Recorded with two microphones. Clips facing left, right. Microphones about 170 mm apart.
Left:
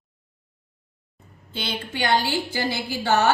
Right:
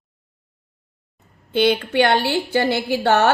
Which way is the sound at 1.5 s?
65° right (ahead or behind).